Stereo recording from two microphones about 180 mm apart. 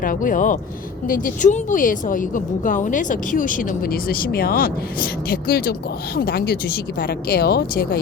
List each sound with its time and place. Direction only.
0.0 s speech: 50° left (ahead or behind)